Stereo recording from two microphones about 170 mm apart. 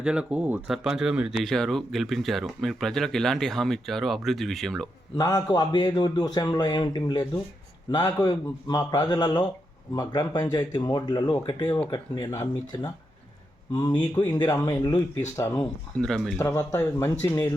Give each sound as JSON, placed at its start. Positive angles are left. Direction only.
{"t": 0.0, "sound": "speech", "side_deg": -5}
{"t": 5.1, "sound": "speech", "side_deg": 20}
{"t": 11.6, "sound": "speech", "side_deg": 15}
{"t": 13.9, "sound": "speech", "side_deg": 10}
{"t": 14.3, "sound": "speech", "side_deg": 25}
{"t": 16.4, "sound": "speech", "side_deg": 15}